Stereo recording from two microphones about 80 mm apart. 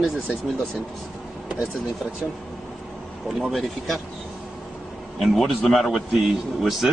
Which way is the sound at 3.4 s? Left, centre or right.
Centre.